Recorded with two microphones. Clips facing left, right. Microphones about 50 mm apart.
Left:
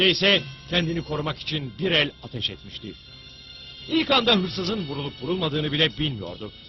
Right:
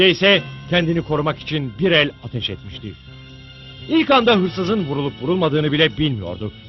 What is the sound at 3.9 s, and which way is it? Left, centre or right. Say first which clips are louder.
A man's voice: right 7 dB; right.